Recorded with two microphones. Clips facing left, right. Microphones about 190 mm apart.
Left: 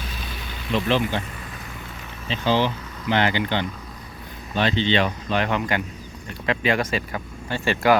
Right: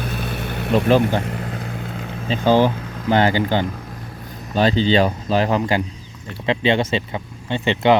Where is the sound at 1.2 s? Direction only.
75° right (ahead or behind).